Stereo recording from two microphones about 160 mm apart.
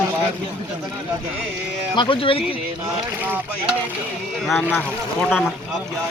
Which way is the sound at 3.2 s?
10° right (ahead or behind).